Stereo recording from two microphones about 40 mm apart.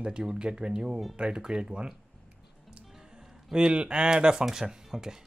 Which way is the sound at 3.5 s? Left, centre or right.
Right.